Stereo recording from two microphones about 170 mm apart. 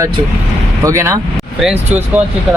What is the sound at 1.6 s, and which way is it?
Speech, 5° right (ahead or behind).